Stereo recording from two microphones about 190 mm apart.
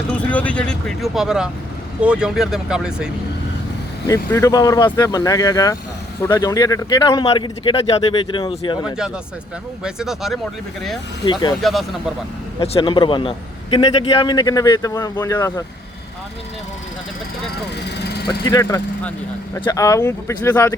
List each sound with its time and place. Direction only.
0.1 s speech: 5° left (ahead or behind)
4.1 s speech: 15° left (ahead or behind)
9.8 s speech: centre (ahead or behind)
11.3 s speech: 20° left (ahead or behind)
11.6 s speech: centre (ahead or behind)
12.5 s speech: 30° left (ahead or behind)
17.8 s vehicle: 60° left (ahead or behind)
18.3 s speech: 20° left (ahead or behind)